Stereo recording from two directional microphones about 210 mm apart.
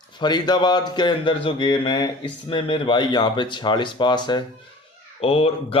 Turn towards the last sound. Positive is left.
turn(degrees=25)  # may be behind; listen again after turning